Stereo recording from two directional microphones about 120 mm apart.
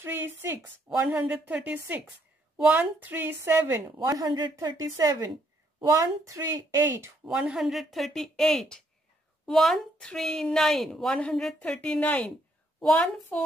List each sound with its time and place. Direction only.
0.0 s a woman's voice: 20° right (ahead or behind)
4.1 s speech: 35° right (ahead or behind)
7.2 s a woman's voice: 5° right (ahead or behind)